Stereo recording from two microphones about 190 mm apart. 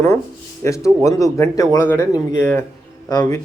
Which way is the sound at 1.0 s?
15° left (ahead or behind).